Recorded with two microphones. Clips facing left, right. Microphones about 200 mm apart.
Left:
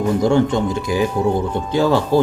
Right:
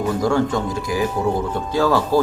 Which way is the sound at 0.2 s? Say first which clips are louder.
Left 4 dB; 25° left (ahead or behind).